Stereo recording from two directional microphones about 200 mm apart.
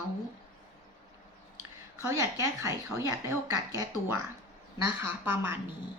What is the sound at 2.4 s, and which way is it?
Speech, 15° right (ahead or behind).